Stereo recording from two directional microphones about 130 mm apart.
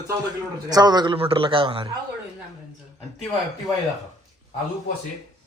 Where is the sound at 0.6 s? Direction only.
30° right (ahead or behind).